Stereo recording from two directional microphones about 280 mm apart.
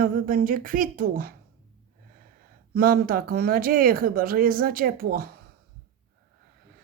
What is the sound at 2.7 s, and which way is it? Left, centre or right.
Speech, right.